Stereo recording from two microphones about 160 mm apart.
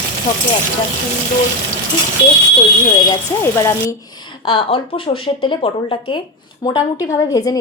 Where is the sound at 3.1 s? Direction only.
20° left (ahead or behind).